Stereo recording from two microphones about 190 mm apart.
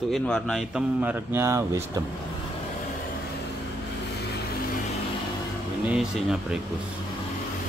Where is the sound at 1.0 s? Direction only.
10° right (ahead or behind).